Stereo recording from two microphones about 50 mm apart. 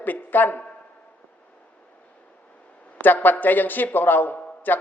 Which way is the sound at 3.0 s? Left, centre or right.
Left.